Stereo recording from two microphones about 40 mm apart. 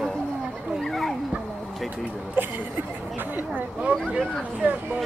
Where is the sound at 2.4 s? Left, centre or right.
Right.